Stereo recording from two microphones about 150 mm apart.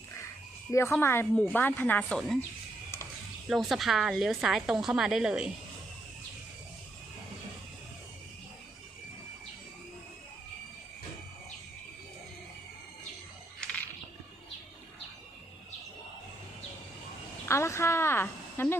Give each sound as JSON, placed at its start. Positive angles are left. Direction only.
{"t": 0.7, "sound": "speech", "side_deg": 15}
{"t": 3.5, "sound": "a woman's voice", "side_deg": 0}
{"t": 17.5, "sound": "a sound", "side_deg": 20}